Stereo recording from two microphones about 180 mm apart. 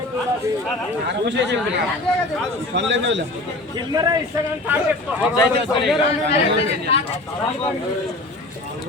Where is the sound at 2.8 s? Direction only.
80° right.